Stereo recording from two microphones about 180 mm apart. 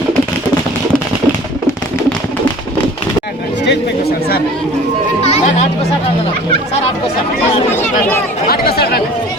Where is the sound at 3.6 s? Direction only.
65° left (ahead or behind).